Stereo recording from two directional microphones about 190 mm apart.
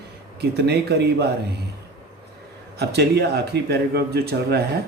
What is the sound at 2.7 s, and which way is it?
Speech, 60° right (ahead or behind).